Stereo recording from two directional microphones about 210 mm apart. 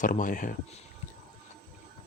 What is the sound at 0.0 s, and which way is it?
Speech, 40° left (ahead or behind).